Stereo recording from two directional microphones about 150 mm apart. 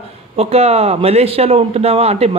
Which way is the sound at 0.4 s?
45° right (ahead or behind).